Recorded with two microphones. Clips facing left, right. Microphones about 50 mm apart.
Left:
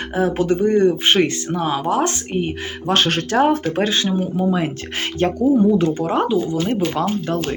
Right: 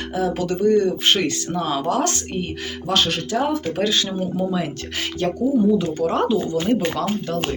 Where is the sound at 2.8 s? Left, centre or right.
Left.